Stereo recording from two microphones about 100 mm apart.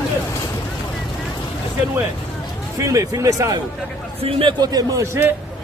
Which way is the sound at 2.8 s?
35° right (ahead or behind).